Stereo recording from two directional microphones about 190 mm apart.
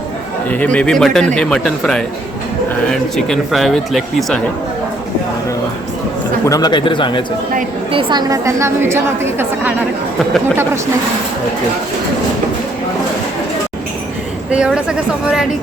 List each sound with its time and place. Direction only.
0.5 s speech: 5° left (ahead or behind)
6.4 s speech: 20° left (ahead or behind)
7.9 s a woman's voice: 25° right (ahead or behind)
14.5 s speech: 5° right (ahead or behind)